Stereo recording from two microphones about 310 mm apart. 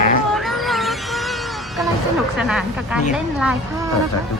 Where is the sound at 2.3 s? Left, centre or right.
Centre.